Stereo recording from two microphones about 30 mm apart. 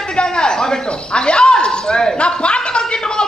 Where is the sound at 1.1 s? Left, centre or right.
Left.